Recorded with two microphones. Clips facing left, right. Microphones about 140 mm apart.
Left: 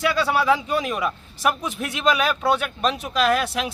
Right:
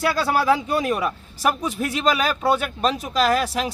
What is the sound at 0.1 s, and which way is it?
Speech, 40° right (ahead or behind).